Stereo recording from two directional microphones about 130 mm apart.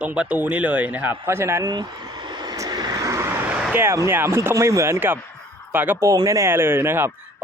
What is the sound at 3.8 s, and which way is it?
Speech, 20° right (ahead or behind).